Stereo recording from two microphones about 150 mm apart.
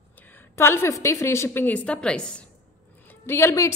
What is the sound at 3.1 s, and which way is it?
Speech, 15° left (ahead or behind).